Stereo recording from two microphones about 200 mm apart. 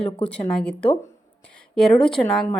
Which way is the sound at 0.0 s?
5° left (ahead or behind).